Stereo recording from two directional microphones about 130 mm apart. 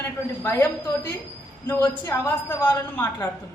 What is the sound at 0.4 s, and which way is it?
A woman's voice, 15° left (ahead or behind).